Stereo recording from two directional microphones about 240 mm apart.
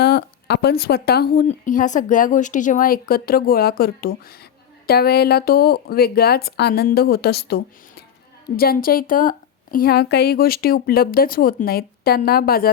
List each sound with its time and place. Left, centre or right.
0.0 s a woman's voice: left